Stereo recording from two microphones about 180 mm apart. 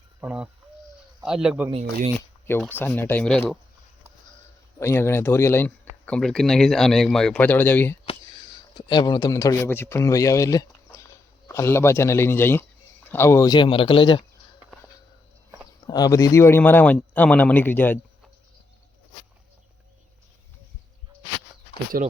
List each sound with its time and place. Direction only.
0.2 s a man's voice: 10° right (ahead or behind)
1.7 s speech: 45° right (ahead or behind)
2.5 s speech: 10° left (ahead or behind)
4.8 s speech: 15° left (ahead or behind)
8.0 s a man's voice: 25° left (ahead or behind)
15.9 s speech: 20° left (ahead or behind)
21.9 s speech: 50° right (ahead or behind)